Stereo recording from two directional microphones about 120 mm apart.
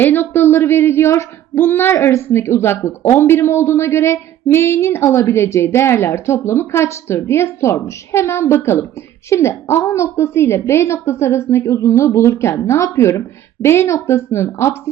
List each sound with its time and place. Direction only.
0.0 s speech: 15° left (ahead or behind)